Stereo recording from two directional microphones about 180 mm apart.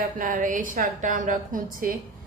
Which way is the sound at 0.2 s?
45° right (ahead or behind).